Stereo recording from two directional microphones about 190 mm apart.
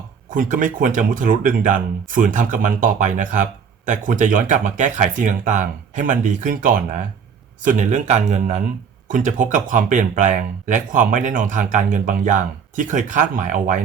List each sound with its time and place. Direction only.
0.3 s speech: 45° right (ahead or behind)